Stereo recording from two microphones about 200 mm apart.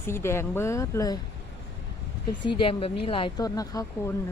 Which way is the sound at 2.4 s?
25° left (ahead or behind).